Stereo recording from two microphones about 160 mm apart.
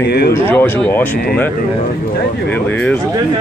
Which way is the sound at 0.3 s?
15° left (ahead or behind).